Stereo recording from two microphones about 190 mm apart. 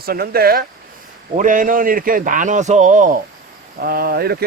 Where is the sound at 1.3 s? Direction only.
45° right (ahead or behind).